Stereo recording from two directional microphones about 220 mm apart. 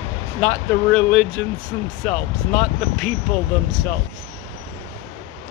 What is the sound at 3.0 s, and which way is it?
Speech, 5° left (ahead or behind).